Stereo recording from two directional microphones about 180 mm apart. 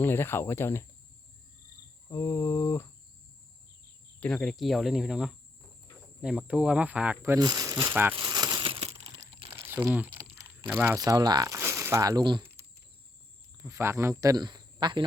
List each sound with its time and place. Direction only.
0.0 s speech: 10° left (ahead or behind)
2.0 s speech: 15° left (ahead or behind)
4.2 s speech: 5° left (ahead or behind); by 8.1 s 15° right (ahead or behind)
8.1 s a sound: 25° right (ahead or behind)
9.1 s crumpling: 30° right (ahead or behind)
9.6 s speech: 10° right (ahead or behind)
12.4 s typing: 10° right (ahead or behind)
13.6 s speech: 15° right (ahead or behind)